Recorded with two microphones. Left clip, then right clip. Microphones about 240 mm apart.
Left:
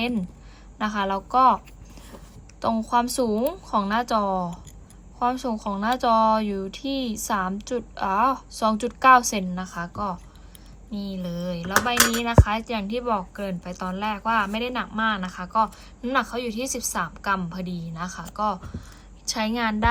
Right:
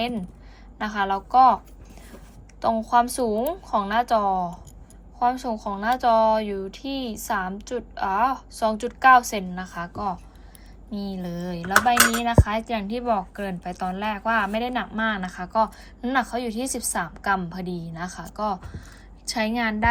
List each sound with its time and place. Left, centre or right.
0.8 s a woman's voice: centre
2.6 s a woman's voice: centre
10.9 s a woman's voice: centre